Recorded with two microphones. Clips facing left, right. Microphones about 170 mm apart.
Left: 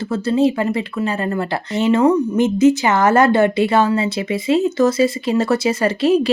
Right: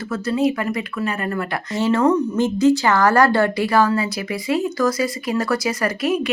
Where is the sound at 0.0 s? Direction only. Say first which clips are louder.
Left 4 dB; 30° left (ahead or behind).